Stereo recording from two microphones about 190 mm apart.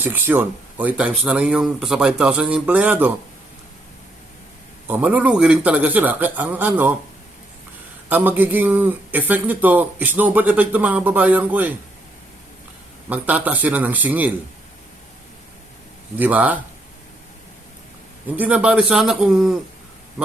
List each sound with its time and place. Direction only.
0.0 s a man's voice: 10° right (ahead or behind)
4.9 s a man's voice: 10° right (ahead or behind)
8.1 s a man's voice: 10° right (ahead or behind)
13.1 s a man's voice: 10° right (ahead or behind)
16.1 s a man's voice: 10° right (ahead or behind)
18.3 s a man's voice: 10° right (ahead or behind)